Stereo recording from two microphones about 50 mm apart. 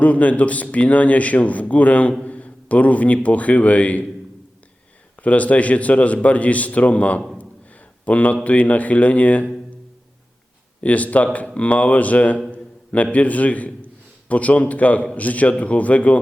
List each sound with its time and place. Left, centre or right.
0.0 s a man's voice: left
2.2 s a sound: left
3.2 s a man's voice: left
5.2 s a man's voice: left
10.8 s a man's voice: left